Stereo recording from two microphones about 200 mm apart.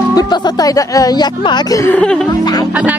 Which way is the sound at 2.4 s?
20° left (ahead or behind).